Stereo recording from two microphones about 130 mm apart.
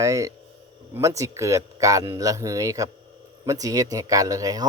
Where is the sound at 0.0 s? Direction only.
25° right (ahead or behind).